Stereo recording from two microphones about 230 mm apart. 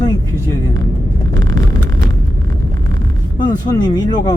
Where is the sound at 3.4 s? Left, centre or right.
Centre.